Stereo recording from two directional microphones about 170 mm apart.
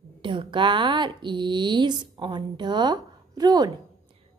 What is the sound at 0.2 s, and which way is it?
Speech, 30° right (ahead or behind).